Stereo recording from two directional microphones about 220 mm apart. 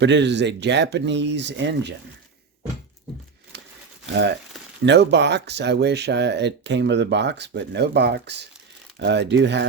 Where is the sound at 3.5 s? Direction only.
50° right (ahead or behind).